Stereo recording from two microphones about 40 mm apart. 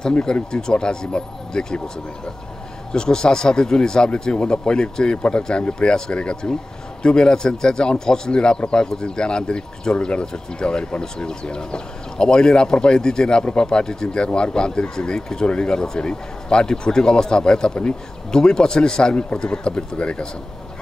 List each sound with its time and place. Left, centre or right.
0.2 s speech: centre
2.9 s speech: centre